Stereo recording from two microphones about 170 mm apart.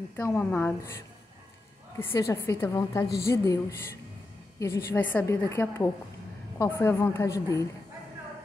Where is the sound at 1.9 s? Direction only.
20° left (ahead or behind).